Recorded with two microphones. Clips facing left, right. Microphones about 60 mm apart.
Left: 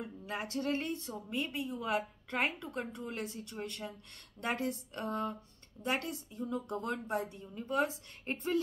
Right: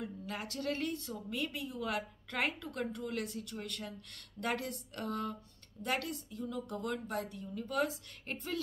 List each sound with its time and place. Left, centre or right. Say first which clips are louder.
0.0 s speech: left 1 dB; left